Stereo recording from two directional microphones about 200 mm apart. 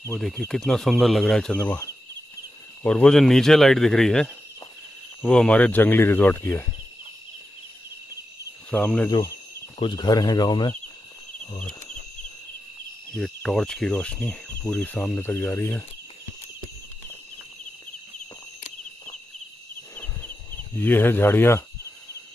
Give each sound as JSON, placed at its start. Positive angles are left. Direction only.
{"t": 0.1, "sound": "speech", "side_deg": 0}
{"t": 8.6, "sound": "speech", "side_deg": 5}
{"t": 9.8, "sound": "speech", "side_deg": 25}
{"t": 13.1, "sound": "speech", "side_deg": 0}
{"t": 20.0, "sound": "a sound", "side_deg": 10}